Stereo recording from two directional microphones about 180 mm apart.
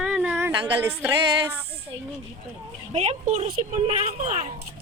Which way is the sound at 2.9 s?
40° right (ahead or behind).